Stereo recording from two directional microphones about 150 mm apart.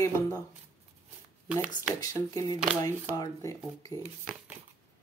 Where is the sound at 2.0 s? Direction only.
25° left (ahead or behind).